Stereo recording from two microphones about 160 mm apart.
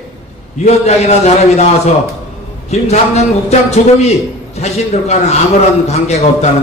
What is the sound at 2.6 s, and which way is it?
A man's voice, 40° left (ahead or behind).